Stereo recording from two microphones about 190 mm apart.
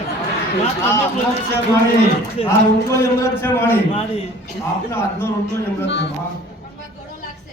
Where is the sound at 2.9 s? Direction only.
15° left (ahead or behind).